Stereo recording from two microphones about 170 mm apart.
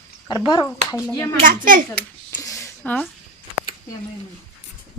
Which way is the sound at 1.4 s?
55° right (ahead or behind).